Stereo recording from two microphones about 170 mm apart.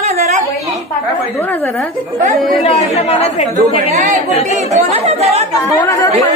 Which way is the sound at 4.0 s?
45° right (ahead or behind).